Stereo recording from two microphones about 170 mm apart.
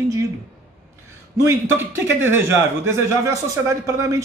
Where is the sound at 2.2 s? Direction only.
15° right (ahead or behind).